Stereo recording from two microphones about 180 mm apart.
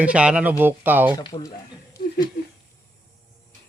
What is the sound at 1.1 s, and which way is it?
Speech, 20° left (ahead or behind).